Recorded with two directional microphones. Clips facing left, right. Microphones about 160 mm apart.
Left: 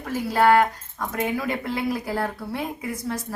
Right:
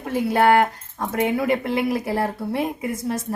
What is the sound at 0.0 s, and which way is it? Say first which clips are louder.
Speech: right 2 dB; 25° right (ahead or behind).